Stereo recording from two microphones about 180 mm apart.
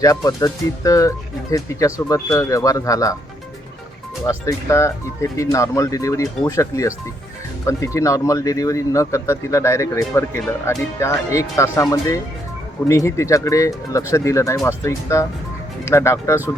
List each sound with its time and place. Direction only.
0.0 s speech: 20° left (ahead or behind)
4.3 s speech: 15° left (ahead or behind)